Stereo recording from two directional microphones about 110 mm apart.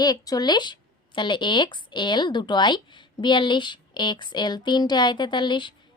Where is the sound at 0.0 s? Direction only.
35° left (ahead or behind).